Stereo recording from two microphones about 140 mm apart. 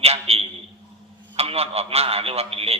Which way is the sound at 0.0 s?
45° right (ahead or behind).